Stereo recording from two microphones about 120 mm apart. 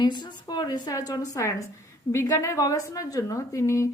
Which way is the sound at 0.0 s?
35° left (ahead or behind).